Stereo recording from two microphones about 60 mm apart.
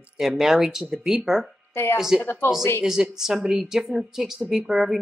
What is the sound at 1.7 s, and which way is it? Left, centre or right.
Speech, left.